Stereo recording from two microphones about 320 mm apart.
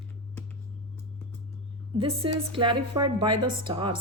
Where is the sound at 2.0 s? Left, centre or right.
Centre.